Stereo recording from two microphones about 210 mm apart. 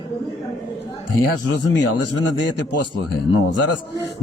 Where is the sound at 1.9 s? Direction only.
90° left.